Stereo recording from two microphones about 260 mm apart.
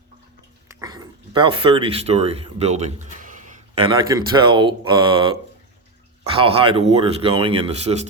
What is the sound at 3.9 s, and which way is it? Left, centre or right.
Speech, centre.